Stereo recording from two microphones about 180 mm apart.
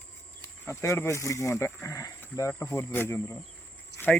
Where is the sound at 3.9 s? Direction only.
70° left (ahead or behind).